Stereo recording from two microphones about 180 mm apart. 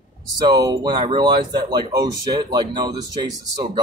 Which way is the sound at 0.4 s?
20° right (ahead or behind).